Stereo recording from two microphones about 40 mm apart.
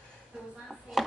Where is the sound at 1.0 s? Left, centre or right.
Centre.